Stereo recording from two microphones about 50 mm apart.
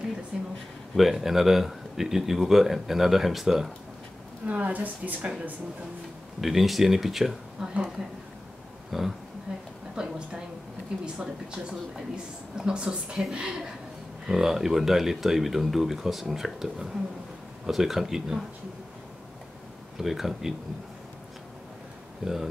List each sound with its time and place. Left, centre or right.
0.3 s a sound: centre
0.9 s speech: centre
4.5 s speech: right
6.4 s a woman's voice: centre
8.9 s speech: centre
9.9 s a woman's voice: centre
20.0 s speech: centre
22.2 s speech: centre